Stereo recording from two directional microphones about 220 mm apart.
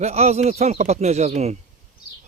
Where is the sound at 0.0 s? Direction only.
30° right (ahead or behind).